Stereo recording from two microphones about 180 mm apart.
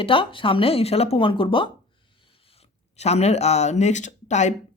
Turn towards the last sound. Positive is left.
turn(degrees=40)  # may be behind; listen again after turning